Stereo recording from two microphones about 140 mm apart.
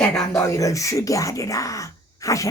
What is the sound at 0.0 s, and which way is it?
Speech, 5° left (ahead or behind).